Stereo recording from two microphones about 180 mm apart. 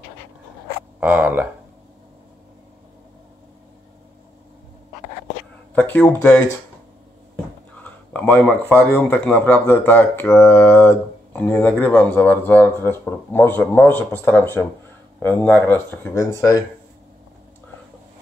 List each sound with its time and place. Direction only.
0.9 s speech: 10° right (ahead or behind)
5.8 s speech: 10° left (ahead or behind)
7.7 s speech: 10° left (ahead or behind)